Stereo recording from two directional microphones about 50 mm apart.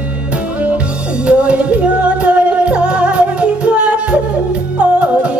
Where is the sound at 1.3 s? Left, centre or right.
Right.